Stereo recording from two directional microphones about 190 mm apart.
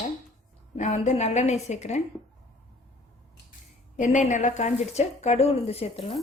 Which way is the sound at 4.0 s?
40° left (ahead or behind).